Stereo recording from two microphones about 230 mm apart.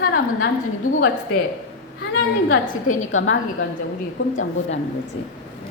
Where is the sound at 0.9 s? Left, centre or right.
Left.